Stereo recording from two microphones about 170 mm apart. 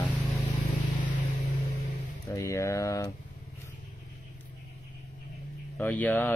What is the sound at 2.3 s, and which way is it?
Speech, 15° left (ahead or behind).